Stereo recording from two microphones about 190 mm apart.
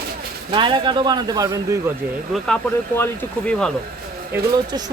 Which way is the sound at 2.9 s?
10° left (ahead or behind).